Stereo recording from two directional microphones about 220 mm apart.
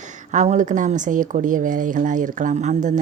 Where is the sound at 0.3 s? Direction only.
35° right (ahead or behind).